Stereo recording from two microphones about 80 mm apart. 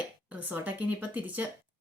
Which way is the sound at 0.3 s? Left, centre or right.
Right.